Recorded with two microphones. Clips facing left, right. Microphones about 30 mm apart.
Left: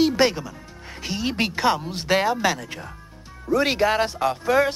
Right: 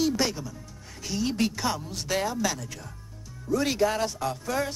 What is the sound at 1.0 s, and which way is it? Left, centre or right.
Speech, left.